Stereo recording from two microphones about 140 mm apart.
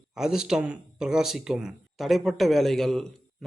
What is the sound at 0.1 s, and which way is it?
Speech, 5° right (ahead or behind).